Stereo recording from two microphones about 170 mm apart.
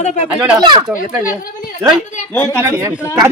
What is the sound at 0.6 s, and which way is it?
Speech, 25° right (ahead or behind).